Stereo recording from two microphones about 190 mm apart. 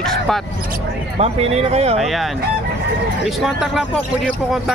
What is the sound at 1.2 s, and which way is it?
Speech, 35° right (ahead or behind).